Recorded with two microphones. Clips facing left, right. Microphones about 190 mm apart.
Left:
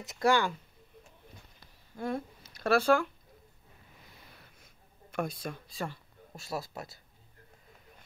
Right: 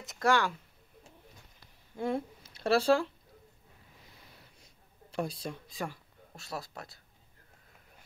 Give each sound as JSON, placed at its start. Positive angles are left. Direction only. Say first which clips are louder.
{"t": 0.0, "sound": "speech", "louder": "left 1 dB", "side_deg": 0}
{"t": 2.0, "sound": "speech", "louder": "right 2 dB", "side_deg": -25}
{"t": 4.6, "sound": "a sound", "louder": "even", "side_deg": -30}
{"t": 5.7, "sound": "speech", "louder": "left 1 dB", "side_deg": -15}
{"t": 6.3, "sound": "speech", "louder": "left 3 dB", "side_deg": 0}